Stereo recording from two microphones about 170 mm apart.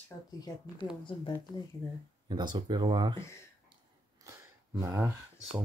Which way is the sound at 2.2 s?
25° right (ahead or behind).